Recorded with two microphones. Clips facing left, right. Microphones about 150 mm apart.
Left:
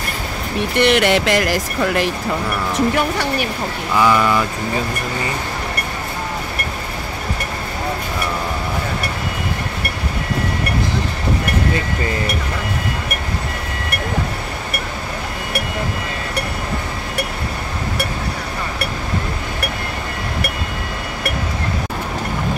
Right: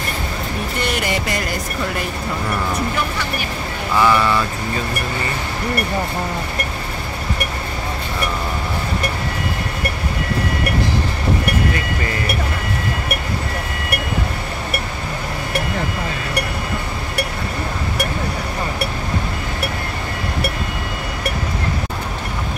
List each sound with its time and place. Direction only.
0.7 s speech: 75° left (ahead or behind); by 2.0 s 90° left
4.0 s speech: 15° left (ahead or behind)